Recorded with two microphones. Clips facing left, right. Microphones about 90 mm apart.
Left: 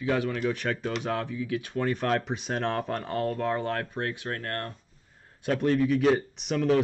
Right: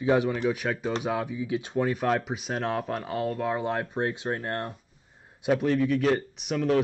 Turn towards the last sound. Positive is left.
turn(degrees=0)  # may be behind; listen again after turning